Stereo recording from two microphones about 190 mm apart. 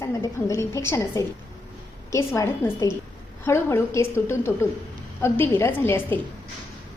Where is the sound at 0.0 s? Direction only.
15° left (ahead or behind).